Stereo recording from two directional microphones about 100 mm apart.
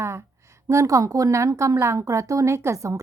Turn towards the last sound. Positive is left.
turn(degrees=-30)  # may be behind; listen again after turning